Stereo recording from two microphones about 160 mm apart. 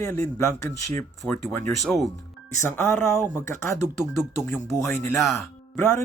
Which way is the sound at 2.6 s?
15° left (ahead or behind).